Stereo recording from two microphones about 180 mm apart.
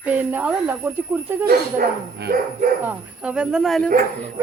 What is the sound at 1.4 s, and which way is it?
Speech, 55° right (ahead or behind).